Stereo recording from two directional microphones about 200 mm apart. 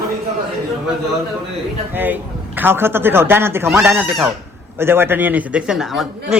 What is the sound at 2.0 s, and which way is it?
A man's voice, 10° right (ahead or behind).